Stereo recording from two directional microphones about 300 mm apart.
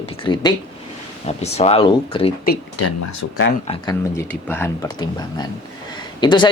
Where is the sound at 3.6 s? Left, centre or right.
Centre.